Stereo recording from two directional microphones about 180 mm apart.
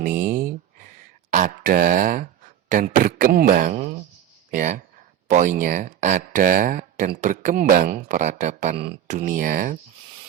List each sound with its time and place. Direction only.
0.0 s a sound: 50° right (ahead or behind)
1.3 s speech: 45° right (ahead or behind)
3.8 s speech: 40° right (ahead or behind)